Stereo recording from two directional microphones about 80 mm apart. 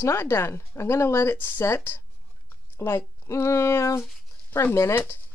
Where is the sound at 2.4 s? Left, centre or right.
Left.